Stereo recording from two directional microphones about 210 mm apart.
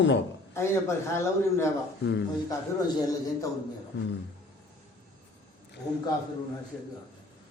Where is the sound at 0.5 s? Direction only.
10° left (ahead or behind).